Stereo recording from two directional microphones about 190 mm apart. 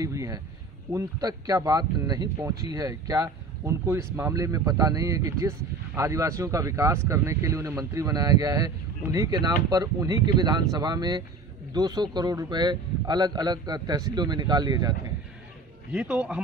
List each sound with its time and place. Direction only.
0.0 s speech: 15° right (ahead or behind)
15.9 s speech: 5° right (ahead or behind)